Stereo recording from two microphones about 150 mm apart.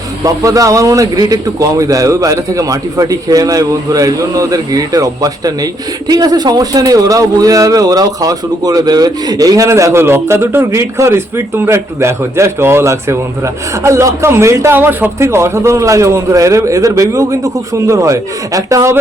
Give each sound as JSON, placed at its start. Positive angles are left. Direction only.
{"t": 0.3, "sound": "a man's voice", "side_deg": -20}